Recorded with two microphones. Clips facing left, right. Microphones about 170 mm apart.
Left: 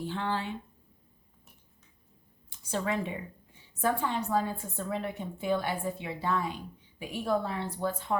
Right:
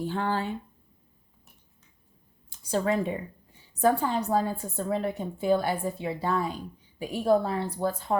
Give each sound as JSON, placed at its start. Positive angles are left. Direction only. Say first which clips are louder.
{"t": 0.0, "sound": "speech", "louder": "right 4 dB", "side_deg": -45}
{"t": 2.5, "sound": "a woman's voice", "louder": "right 5 dB", "side_deg": -35}